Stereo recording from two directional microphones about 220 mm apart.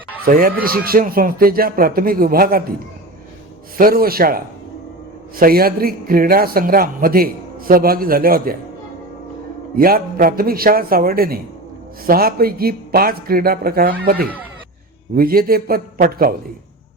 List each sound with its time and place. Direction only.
0.3 s a man's voice: 40° right (ahead or behind)
3.8 s a man's voice: 40° right (ahead or behind)
9.7 s a man's voice: 40° right (ahead or behind)